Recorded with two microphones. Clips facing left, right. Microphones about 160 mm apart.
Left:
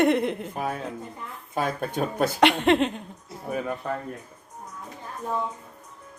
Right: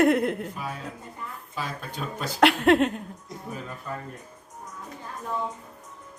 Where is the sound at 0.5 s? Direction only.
50° left (ahead or behind).